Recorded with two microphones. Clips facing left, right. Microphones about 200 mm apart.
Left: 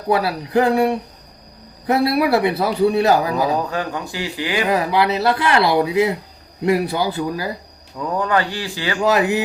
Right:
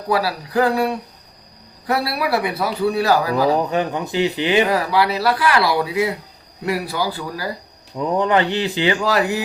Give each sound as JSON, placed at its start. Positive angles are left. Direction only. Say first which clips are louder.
{"t": 0.1, "sound": "speech", "louder": "left 2 dB", "side_deg": 25}
{"t": 3.6, "sound": "speech", "louder": "right 3 dB", "side_deg": -20}
{"t": 4.7, "sound": "speech", "louder": "left 1 dB", "side_deg": 20}
{"t": 7.9, "sound": "speech", "louder": "right 2 dB", "side_deg": -20}
{"t": 9.0, "sound": "speech", "louder": "left 2 dB", "side_deg": 20}